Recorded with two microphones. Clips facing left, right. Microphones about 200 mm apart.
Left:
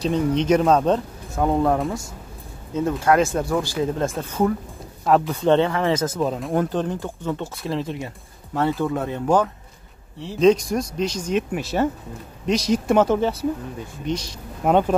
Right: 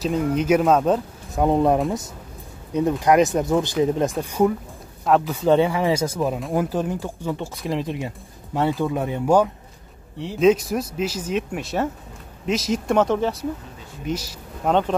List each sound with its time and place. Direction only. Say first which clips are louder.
0.0 s speech: left 1 dB; 5° right (ahead or behind)
1.3 s speech: right 2 dB; 20° right (ahead or behind)
5.0 s speech: even; centre (ahead or behind)
14.6 s speech: left 2 dB; 10° left (ahead or behind)